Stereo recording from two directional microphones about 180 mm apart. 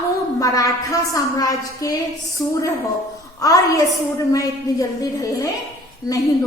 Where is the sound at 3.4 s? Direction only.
20° left (ahead or behind).